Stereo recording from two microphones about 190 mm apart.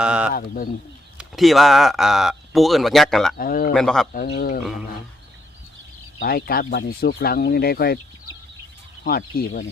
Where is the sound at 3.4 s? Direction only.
50° left (ahead or behind).